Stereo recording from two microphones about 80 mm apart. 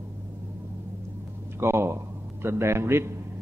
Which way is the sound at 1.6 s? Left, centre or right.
Right.